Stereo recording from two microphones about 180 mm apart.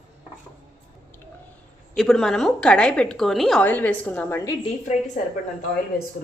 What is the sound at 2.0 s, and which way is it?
A woman's voice, centre (ahead or behind).